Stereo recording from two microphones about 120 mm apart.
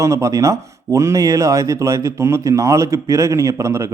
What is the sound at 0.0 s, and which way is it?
A man's voice, 25° right (ahead or behind).